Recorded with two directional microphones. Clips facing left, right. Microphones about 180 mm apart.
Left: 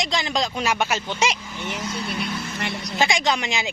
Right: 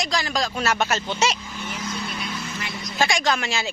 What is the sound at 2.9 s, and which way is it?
Speech, 20° left (ahead or behind).